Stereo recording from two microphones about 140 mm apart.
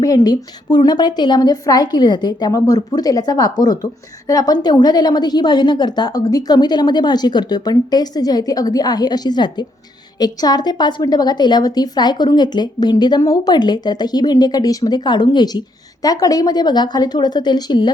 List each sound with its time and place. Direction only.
0.0 s a woman's voice: 25° left (ahead or behind)